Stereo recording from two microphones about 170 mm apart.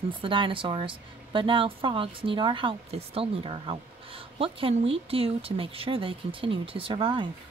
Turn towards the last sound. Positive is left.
turn(degrees=-30)  # may be behind; listen again after turning